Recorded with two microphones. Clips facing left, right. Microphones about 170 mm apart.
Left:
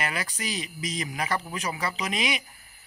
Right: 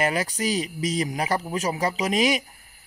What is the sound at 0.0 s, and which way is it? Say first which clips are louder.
Speech: right 8 dB; 40° right (ahead or behind).